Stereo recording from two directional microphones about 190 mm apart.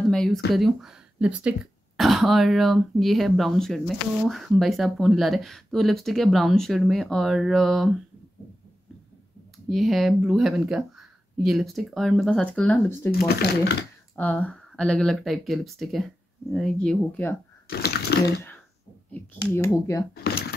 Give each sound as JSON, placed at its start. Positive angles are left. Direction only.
{"t": 0.1, "sound": "a sound", "side_deg": 0}
{"t": 0.5, "sound": "speech", "side_deg": 0}
{"t": 9.7, "sound": "speech", "side_deg": 0}
{"t": 13.1, "sound": "speech", "side_deg": 55}
{"t": 14.1, "sound": "speech", "side_deg": 10}
{"t": 17.6, "sound": "a sound", "side_deg": 55}
{"t": 19.4, "sound": "speech", "side_deg": 15}